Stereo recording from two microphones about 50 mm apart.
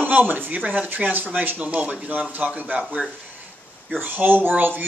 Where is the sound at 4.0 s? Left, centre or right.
Right.